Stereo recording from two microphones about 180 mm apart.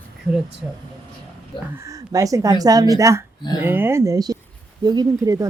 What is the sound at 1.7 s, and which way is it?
Speech, 15° right (ahead or behind).